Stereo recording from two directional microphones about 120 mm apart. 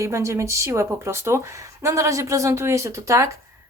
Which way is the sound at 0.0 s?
25° right (ahead or behind).